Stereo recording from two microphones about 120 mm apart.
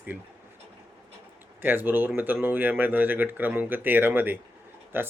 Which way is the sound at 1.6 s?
15° right (ahead or behind).